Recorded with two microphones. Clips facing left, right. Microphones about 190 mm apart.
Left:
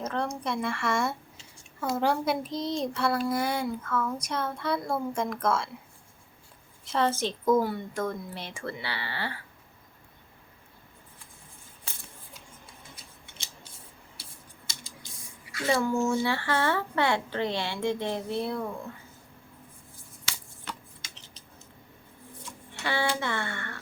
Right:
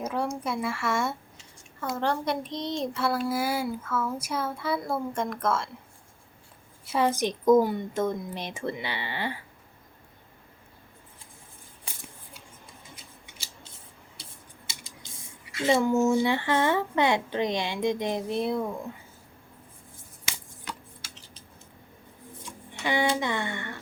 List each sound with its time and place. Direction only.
0.0 s a child's voice: 10° right (ahead or behind)
6.8 s speech: 10° right (ahead or behind)
14.2 s scissors: 20° right (ahead or behind)
15.0 s spray: 25° right (ahead or behind)
15.5 s speech: 20° right (ahead or behind)
20.2 s a sound: 15° right (ahead or behind)
22.7 s speech: 15° right (ahead or behind)